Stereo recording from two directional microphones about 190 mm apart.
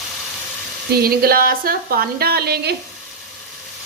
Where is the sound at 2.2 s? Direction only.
55° right (ahead or behind).